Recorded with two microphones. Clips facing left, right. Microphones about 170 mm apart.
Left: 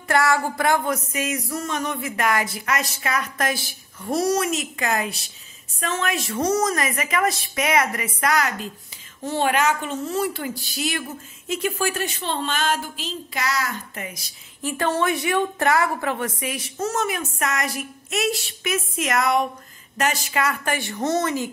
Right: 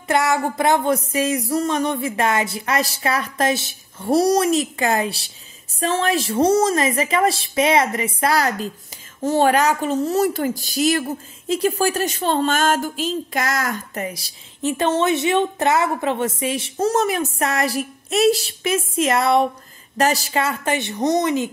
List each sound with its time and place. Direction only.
0.1 s a woman's voice: 20° right (ahead or behind)
4.1 s a woman's voice: 35° right (ahead or behind)
14.6 s a woman's voice: 20° right (ahead or behind)